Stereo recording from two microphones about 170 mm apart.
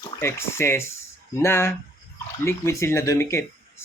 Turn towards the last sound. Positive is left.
turn(degrees=15)  # may be behind; listen again after turning